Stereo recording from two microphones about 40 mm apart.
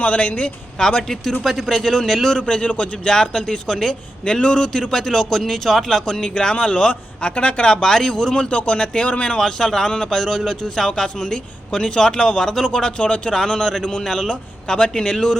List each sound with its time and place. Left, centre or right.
0.0 s speech: left
0.8 s a man's voice: centre
2.5 s a man's voice: left
3.1 s a man's voice: centre
8.4 s a man's voice: left
13.0 s a man's voice: left
13.3 s a man's voice: centre